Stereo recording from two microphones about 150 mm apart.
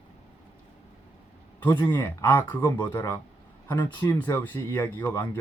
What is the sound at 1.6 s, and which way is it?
Speech, 10° left (ahead or behind).